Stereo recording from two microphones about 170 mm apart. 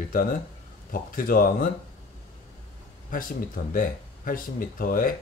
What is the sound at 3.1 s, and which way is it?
Speech, 55° left (ahead or behind).